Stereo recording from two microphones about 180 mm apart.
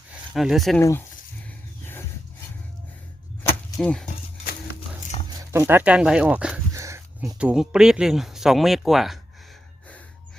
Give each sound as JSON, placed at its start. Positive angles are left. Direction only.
{"t": 0.3, "sound": "speech", "side_deg": 0}
{"t": 0.8, "sound": "speech", "side_deg": 15}
{"t": 3.8, "sound": "speech", "side_deg": 5}
{"t": 5.4, "sound": "speech", "side_deg": -15}
{"t": 6.7, "sound": "dog", "side_deg": -15}
{"t": 7.3, "sound": "speech", "side_deg": -5}